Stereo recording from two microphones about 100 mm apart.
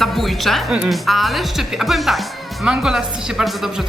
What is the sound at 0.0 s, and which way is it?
Speech, centre (ahead or behind).